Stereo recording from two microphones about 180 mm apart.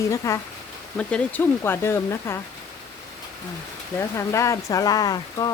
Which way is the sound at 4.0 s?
15° left (ahead or behind).